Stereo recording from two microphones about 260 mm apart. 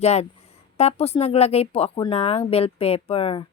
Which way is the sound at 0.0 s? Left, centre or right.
Left.